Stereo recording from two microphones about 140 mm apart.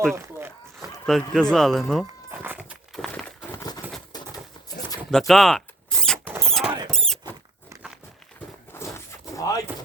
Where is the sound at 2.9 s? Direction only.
Centre (ahead or behind).